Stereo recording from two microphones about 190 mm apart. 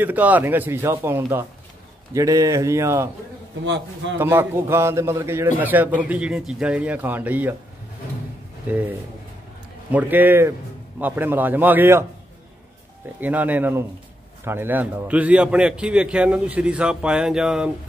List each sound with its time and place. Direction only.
0.0 s a man's voice: 10° right (ahead or behind)
3.6 s a man's voice: 70° right (ahead or behind)
4.2 s a man's voice: 10° right (ahead or behind)
8.7 s a man's voice: 10° right (ahead or behind)
9.8 s a man's voice: 10° right (ahead or behind)
13.2 s a man's voice: 10° right (ahead or behind)